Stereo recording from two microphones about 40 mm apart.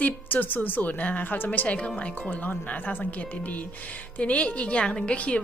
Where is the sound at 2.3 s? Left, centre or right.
Left.